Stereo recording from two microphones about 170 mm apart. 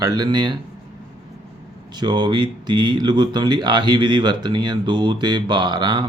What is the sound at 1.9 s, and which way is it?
Speech, 25° right (ahead or behind).